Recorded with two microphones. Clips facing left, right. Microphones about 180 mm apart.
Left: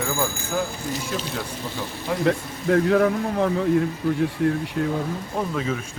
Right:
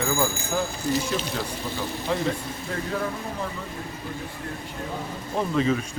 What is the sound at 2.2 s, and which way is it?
Speech, 70° left (ahead or behind).